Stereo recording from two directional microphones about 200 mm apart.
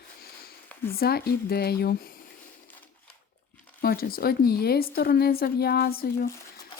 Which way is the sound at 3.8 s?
50° left (ahead or behind).